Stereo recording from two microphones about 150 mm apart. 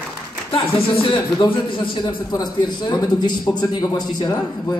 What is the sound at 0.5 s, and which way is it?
Speech, 35° left (ahead or behind).